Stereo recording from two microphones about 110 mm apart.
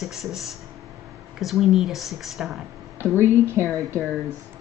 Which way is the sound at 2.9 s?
25° right (ahead or behind).